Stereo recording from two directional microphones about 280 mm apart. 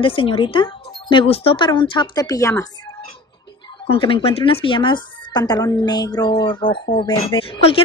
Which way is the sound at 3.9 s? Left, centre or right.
Centre.